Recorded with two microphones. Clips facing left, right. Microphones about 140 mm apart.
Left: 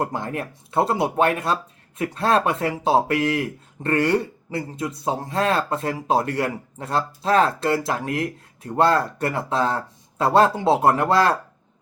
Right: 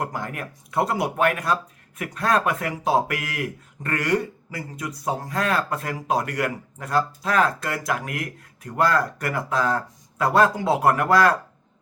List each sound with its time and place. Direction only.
0.0 s speech: 30° left (ahead or behind)